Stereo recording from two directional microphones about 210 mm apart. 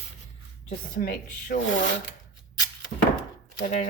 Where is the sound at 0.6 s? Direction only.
40° left (ahead or behind).